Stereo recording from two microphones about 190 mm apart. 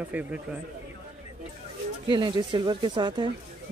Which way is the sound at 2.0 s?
25° right (ahead or behind).